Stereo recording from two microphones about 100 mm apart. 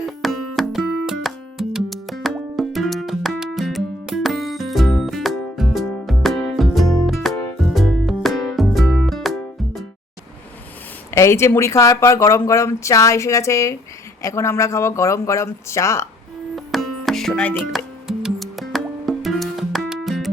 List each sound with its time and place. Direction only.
0.2 s music: centre (ahead or behind)
11.1 s speech: 25° left (ahead or behind)
16.6 s music: centre (ahead or behind)